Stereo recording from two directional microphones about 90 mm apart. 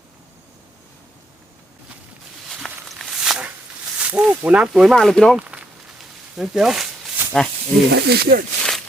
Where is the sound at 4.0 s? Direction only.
15° right (ahead or behind).